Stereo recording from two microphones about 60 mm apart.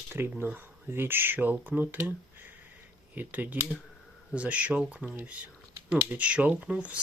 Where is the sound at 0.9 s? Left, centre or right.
Right.